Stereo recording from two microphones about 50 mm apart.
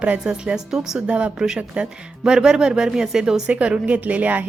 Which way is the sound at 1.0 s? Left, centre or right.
Right.